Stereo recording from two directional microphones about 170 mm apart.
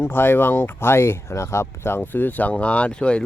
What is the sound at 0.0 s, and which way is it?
Speech, 15° left (ahead or behind).